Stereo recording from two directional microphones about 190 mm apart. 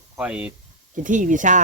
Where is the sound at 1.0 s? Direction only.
40° right (ahead or behind).